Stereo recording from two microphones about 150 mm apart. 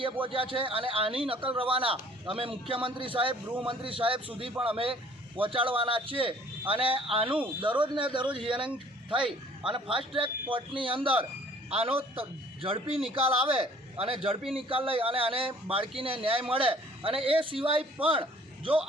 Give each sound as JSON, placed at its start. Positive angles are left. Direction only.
{"t": 0.0, "sound": "a man's voice", "side_deg": -35}